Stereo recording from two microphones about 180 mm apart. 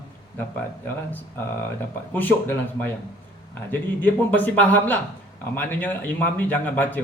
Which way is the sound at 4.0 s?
10° left (ahead or behind).